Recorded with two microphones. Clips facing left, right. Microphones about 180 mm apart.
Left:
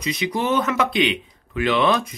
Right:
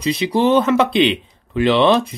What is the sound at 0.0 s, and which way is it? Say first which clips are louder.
Speech: right 7 dB; 30° right (ahead or behind).